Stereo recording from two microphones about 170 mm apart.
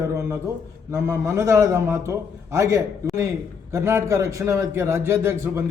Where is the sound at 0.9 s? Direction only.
15° right (ahead or behind).